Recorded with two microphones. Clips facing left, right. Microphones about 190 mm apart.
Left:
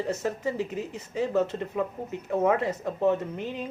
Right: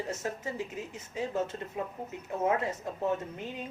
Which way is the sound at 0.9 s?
65° left (ahead or behind).